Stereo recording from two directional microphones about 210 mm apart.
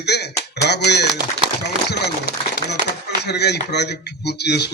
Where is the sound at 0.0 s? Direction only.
50° left (ahead or behind).